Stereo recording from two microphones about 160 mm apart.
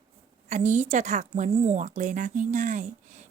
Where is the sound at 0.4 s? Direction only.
50° right (ahead or behind).